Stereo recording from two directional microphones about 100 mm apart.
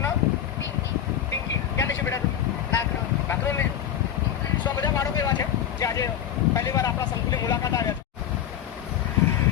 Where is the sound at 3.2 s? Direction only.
25° left (ahead or behind).